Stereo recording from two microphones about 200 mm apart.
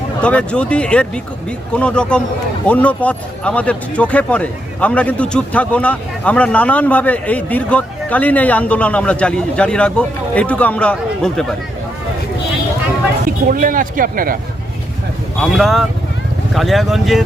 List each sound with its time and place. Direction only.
0.2 s a man's voice: 5° left (ahead or behind)
13.5 s speech: 45° right (ahead or behind)
15.4 s speech: centre (ahead or behind)